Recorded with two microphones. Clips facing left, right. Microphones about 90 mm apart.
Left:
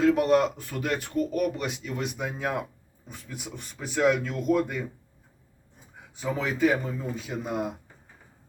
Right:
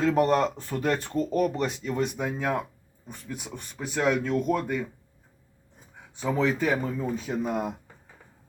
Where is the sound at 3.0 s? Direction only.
Centre (ahead or behind).